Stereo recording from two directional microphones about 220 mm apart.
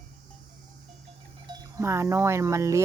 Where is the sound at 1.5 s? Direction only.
15° right (ahead or behind).